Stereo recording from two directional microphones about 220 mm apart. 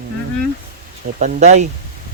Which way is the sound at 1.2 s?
35° right (ahead or behind).